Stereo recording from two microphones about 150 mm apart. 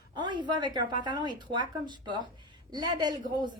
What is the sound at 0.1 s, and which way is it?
A woman's voice, 30° right (ahead or behind).